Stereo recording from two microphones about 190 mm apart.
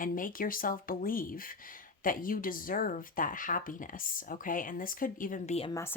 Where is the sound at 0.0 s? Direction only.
45° left (ahead or behind).